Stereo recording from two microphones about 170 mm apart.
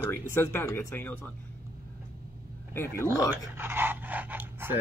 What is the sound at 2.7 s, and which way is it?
Speech, 15° left (ahead or behind).